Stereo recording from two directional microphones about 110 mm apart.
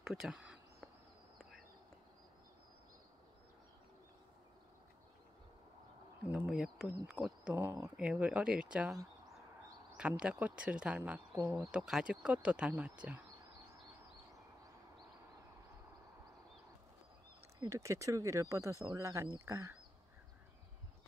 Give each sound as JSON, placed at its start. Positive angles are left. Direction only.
{"t": 0.0, "sound": "a sound", "side_deg": -5}
{"t": 6.2, "sound": "speech", "side_deg": -10}
{"t": 9.9, "sound": "speech", "side_deg": -10}
{"t": 11.3, "sound": "speech", "side_deg": -30}
{"t": 11.6, "sound": "speech", "side_deg": -5}
{"t": 17.6, "sound": "speech", "side_deg": -30}